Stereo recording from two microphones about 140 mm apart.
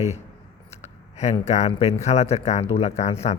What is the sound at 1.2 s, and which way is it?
Speech, 55° left (ahead or behind).